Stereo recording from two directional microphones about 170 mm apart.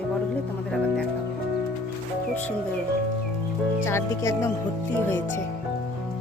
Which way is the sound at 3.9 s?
15° left (ahead or behind).